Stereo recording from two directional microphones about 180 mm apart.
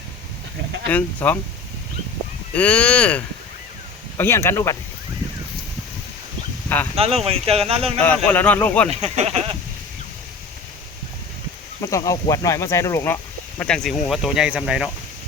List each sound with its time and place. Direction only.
0.9 s speech: 10° left (ahead or behind)
2.6 s speech: 5° left (ahead or behind)
6.9 s speech: 35° right (ahead or behind)
8.0 s speech: 10° left (ahead or behind)
8.9 s speech: 35° right (ahead or behind)
11.8 s speech: 20° left (ahead or behind)
13.6 s speech: 5° left (ahead or behind)